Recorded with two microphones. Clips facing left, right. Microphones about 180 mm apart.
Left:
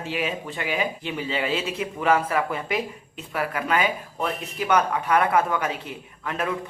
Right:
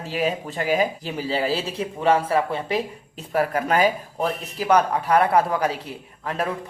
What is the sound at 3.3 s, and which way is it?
Speech, 40° right (ahead or behind).